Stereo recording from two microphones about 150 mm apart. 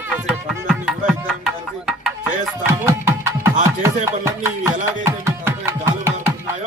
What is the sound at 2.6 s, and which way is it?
Music, 20° right (ahead or behind).